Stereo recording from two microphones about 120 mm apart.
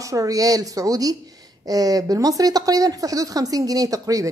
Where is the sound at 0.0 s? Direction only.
30° right (ahead or behind).